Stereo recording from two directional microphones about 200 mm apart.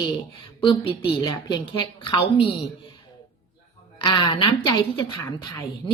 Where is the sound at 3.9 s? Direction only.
20° left (ahead or behind).